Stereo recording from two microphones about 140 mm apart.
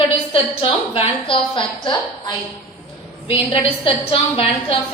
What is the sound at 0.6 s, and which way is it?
A woman's voice, 35° left (ahead or behind).